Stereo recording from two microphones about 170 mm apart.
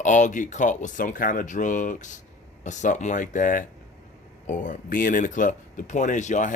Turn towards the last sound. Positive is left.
turn(degrees=45)  # may be behind; listen again after turning